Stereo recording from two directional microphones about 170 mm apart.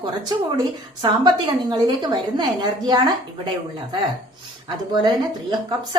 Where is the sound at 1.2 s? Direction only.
25° right (ahead or behind).